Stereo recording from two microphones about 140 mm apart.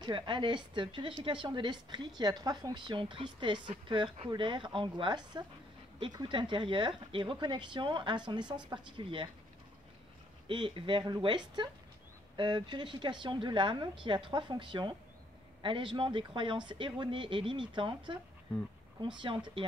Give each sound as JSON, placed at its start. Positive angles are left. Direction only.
{"t": 0.0, "sound": "a woman's voice", "side_deg": -35}
{"t": 10.5, "sound": "a woman's voice", "side_deg": -35}